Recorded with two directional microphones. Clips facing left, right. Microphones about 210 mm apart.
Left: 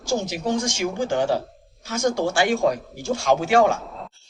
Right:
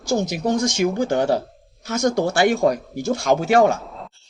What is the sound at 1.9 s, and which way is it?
Speech, 40° right (ahead or behind).